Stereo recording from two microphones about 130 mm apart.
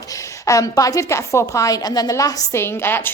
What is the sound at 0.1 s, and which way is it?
A woman's voice, 25° left (ahead or behind).